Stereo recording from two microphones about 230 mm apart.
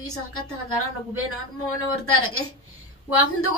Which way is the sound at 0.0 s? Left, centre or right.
Left.